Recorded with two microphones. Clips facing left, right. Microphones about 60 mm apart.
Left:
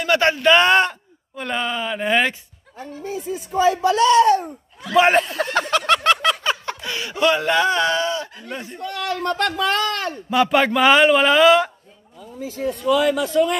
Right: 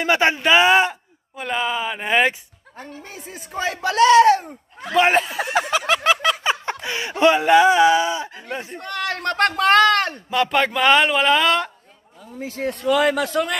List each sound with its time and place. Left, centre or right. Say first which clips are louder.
0.0 s speech: left 1 dB; centre
2.8 s speech: left 7 dB; right
4.9 s speech: left 2 dB; centre
6.4 s speech: right 1 dB; right
8.7 s speech: left 2 dB; right
10.3 s a man's voice: left 3 dB; centre
12.4 s speech: left 1 dB; right